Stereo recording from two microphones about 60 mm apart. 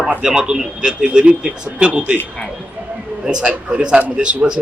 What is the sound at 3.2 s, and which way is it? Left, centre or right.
A man's voice, centre.